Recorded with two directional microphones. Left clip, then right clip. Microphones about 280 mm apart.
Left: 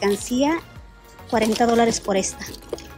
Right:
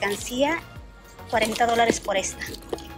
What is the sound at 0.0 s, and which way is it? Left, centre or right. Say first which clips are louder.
Speech: left 3 dB; centre.